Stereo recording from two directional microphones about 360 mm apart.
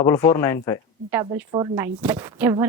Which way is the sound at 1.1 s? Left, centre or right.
Centre.